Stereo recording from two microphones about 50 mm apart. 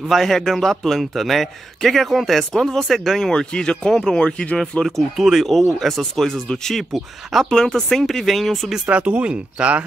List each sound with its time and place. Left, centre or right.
0.1 s a man's voice: centre
4.8 s a man's voice: centre
7.5 s a man's voice: centre
8.8 s speech: right